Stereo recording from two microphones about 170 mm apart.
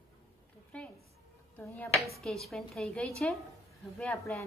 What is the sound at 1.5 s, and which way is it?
A woman's voice, 10° left (ahead or behind).